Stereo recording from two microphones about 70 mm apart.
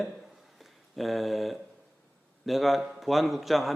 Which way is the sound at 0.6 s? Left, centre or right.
Centre.